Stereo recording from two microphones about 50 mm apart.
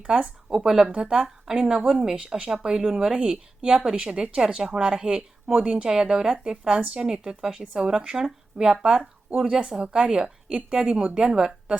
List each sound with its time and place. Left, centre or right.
0.0 s a woman's voice: centre